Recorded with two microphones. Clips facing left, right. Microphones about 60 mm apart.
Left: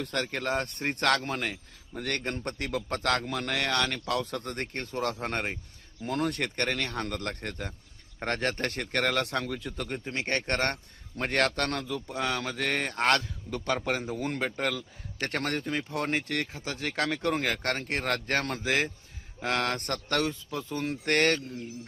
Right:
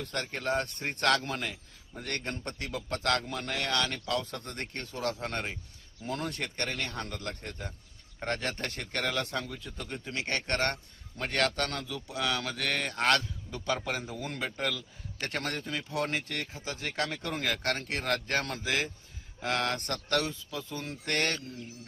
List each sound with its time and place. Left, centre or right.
0.0 s speech: left
2.9 s speech: left
3.2 s speech: left
3.7 s speech: left
6.1 s speech: left
9.9 s speech: left
17.4 s speech: left